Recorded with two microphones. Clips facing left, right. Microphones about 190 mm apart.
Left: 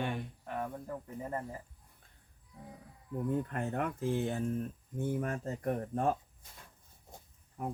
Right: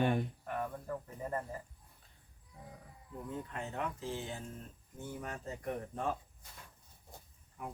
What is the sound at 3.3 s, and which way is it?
Speech, 55° left (ahead or behind).